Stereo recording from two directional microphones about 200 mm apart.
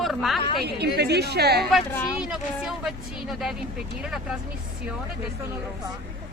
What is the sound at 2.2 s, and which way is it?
Speech, 5° right (ahead or behind).